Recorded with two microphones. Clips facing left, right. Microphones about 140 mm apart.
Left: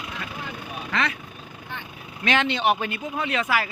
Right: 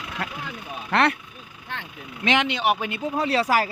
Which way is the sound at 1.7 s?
80° right.